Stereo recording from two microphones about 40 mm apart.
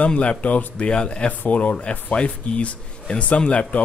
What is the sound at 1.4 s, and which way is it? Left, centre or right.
Speech, left.